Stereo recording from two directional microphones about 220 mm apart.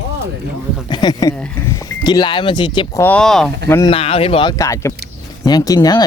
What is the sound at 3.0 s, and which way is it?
Speech, 5° left (ahead or behind).